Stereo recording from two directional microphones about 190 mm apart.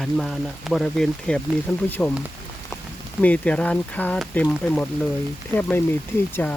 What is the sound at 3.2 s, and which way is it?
Speech, 5° left (ahead or behind).